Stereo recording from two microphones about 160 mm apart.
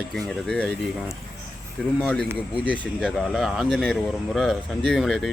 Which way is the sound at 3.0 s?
Centre (ahead or behind).